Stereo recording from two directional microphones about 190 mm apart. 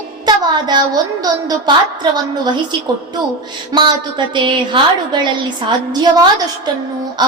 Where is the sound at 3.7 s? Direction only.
25° right (ahead or behind).